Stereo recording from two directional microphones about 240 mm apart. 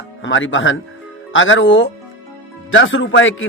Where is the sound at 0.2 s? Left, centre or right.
Left.